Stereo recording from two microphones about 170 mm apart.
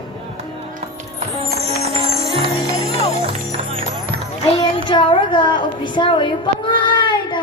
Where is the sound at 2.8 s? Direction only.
40° left (ahead or behind).